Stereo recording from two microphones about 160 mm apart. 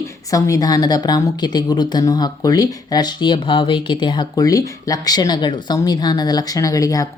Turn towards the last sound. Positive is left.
turn(degrees=20)  # may be behind; listen again after turning